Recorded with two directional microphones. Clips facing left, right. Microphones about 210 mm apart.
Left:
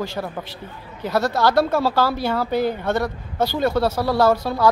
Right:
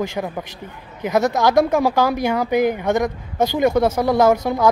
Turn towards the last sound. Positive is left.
turn(degrees=-20)  # may be behind; listen again after turning